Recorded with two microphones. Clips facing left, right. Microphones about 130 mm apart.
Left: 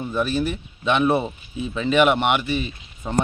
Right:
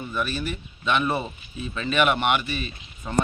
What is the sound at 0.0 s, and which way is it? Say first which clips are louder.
Speech: left 6 dB; 30° left (ahead or behind).